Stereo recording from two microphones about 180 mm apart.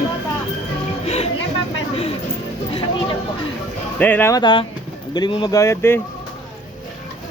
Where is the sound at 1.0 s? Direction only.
35° left (ahead or behind).